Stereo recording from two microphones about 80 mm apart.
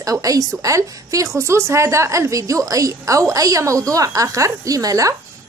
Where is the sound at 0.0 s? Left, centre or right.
Right.